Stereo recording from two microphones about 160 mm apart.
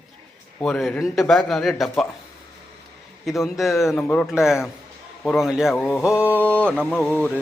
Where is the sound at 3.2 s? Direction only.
Centre (ahead or behind).